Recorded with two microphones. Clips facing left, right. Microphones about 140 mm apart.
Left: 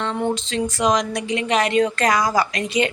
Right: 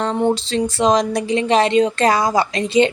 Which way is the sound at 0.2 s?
25° right (ahead or behind).